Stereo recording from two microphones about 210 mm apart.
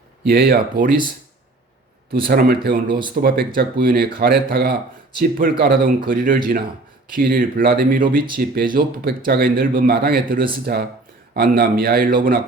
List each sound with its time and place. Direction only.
0.3 s speech: 45° right (ahead or behind)
2.1 s a man's voice: 45° right (ahead or behind)